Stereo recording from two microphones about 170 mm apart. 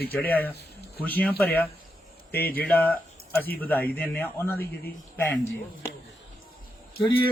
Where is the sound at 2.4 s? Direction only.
60° left (ahead or behind).